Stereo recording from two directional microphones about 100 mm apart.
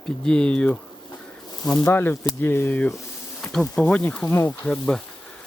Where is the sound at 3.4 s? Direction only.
15° left (ahead or behind).